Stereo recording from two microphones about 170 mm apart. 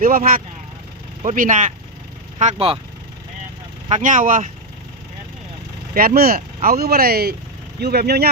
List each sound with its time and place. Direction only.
0.0 s speech: 60° right (ahead or behind)
2.4 s speech: 40° right (ahead or behind)
3.8 s speech: 45° right (ahead or behind)
5.9 s speech: 60° right (ahead or behind)